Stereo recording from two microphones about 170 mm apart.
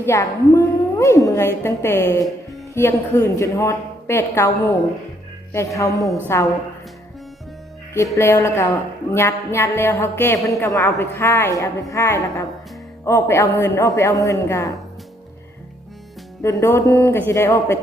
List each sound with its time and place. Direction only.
0.0 s a woman's voice: 15° left (ahead or behind)
8.1 s a woman's voice: 15° left (ahead or behind)
16.4 s a woman's voice: 15° left (ahead or behind)